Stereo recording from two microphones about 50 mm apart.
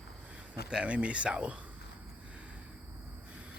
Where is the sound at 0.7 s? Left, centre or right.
Centre.